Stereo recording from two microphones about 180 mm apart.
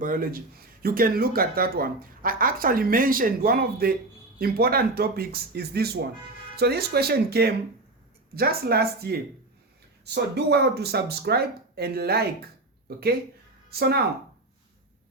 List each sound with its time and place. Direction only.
0.0 s speech: 50° right (ahead or behind)
10.3 s speech: 65° right (ahead or behind)
13.7 s speech: 60° right (ahead or behind)